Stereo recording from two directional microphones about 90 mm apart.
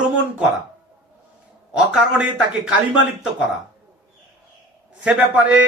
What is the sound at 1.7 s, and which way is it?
Speech, 10° right (ahead or behind).